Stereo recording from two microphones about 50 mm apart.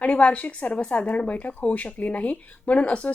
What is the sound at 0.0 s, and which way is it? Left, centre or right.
Speech, left.